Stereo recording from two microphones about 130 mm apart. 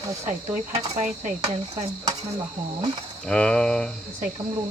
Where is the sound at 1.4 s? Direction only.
25° right (ahead or behind).